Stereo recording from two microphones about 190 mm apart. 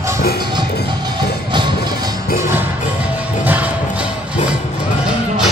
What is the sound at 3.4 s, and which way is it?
Music, 10° right (ahead or behind).